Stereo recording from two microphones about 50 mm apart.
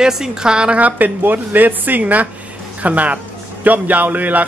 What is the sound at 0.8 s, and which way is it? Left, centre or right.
Speech, right.